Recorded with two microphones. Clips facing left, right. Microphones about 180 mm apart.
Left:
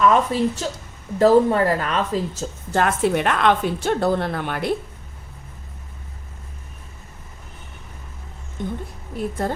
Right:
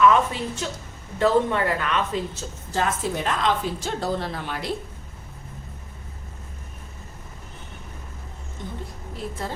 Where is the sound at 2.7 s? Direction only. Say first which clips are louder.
Left 6 dB; 65° left (ahead or behind).